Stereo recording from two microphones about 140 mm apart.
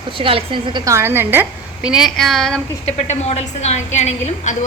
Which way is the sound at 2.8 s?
50° left (ahead or behind).